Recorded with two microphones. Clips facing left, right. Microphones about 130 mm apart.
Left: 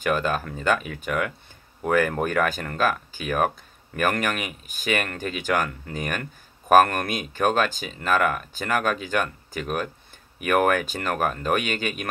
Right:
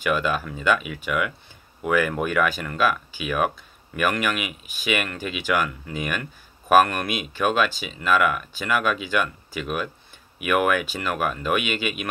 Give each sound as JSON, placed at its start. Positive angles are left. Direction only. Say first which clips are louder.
{"t": 0.0, "sound": "speech", "louder": "even", "side_deg": 40}